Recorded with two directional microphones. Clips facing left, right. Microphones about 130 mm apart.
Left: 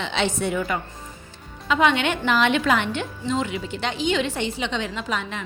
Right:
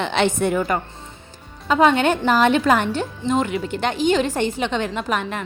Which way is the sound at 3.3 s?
50° right (ahead or behind).